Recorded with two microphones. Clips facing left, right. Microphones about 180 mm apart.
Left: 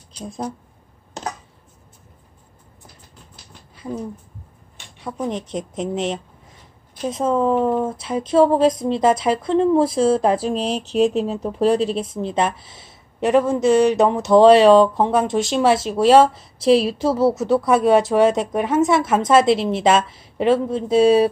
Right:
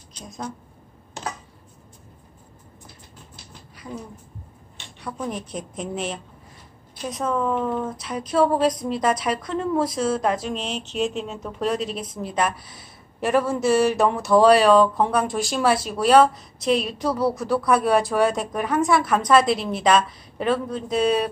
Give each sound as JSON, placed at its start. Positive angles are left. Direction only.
{"t": 0.2, "sound": "speech", "side_deg": 30}
{"t": 3.8, "sound": "speech", "side_deg": 30}
{"t": 5.0, "sound": "speech", "side_deg": 20}